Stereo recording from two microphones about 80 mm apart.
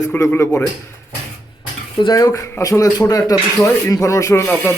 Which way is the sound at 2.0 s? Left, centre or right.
Left.